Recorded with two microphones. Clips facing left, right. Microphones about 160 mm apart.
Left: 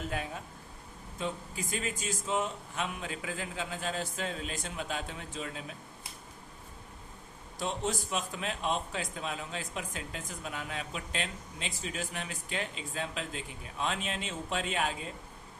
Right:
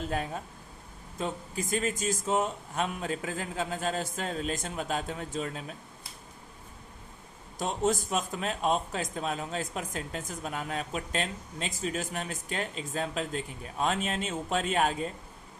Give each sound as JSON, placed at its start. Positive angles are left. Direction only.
{"t": 1.2, "sound": "speech", "side_deg": -45}
{"t": 7.6, "sound": "a man's voice", "side_deg": -45}